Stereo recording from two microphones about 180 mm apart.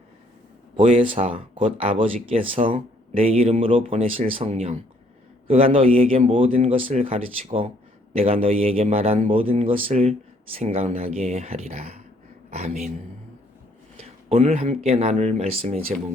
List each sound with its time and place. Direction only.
0.9 s a man's voice: 30° right (ahead or behind)
13.9 s a sound: 35° right (ahead or behind)
14.8 s a man's voice: 35° right (ahead or behind)